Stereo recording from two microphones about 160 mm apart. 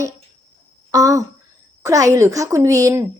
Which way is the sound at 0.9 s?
20° right (ahead or behind).